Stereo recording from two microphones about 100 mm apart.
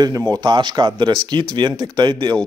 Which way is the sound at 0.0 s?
35° right (ahead or behind).